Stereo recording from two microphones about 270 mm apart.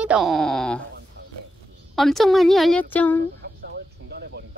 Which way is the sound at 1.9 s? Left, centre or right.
Centre.